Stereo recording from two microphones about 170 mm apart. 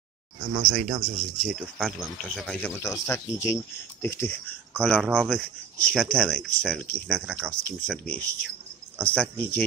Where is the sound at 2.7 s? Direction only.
15° left (ahead or behind).